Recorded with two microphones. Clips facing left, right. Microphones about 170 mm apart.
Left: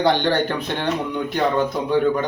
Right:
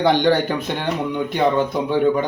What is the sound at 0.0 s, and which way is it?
A man's voice, 10° right (ahead or behind).